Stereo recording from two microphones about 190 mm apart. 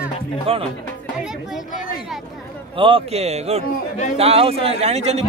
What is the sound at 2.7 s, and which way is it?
A man's voice, 30° right (ahead or behind).